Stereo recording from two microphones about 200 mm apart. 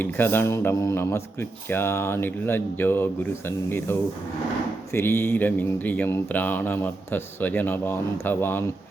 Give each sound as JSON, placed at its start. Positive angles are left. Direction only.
{"t": 0.0, "sound": "speech", "side_deg": 10}